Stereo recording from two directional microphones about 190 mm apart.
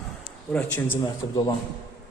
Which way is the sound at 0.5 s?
10° left (ahead or behind).